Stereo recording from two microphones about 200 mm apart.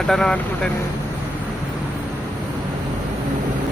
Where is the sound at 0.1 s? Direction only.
5° left (ahead or behind).